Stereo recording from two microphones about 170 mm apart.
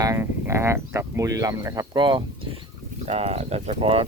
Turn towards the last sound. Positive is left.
turn(degrees=-35)  # may be behind; listen again after turning